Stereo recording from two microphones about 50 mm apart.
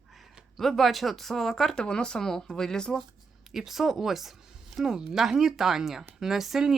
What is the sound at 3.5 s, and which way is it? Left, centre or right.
Speech, centre.